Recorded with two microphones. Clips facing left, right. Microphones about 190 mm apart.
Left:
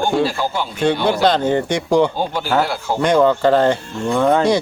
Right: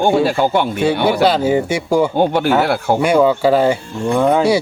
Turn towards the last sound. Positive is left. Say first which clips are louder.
# right 1 dB
turn(degrees=-10)  # may be behind; listen again after turning